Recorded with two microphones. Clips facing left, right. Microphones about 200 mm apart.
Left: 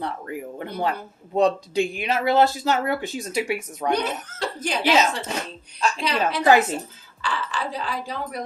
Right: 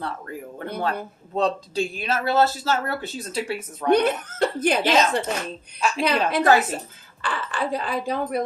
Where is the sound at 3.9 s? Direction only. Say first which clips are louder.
Right 6 dB; 60° right (ahead or behind).